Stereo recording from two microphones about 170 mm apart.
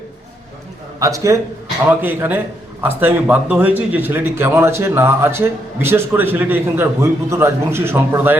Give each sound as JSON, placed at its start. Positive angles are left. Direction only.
{"t": 0.9, "sound": "a man's voice", "side_deg": -20}